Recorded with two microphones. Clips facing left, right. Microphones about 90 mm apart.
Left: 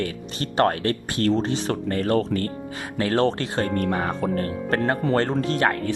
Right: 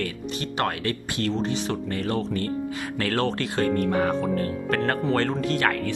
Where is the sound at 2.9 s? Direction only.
25° left (ahead or behind).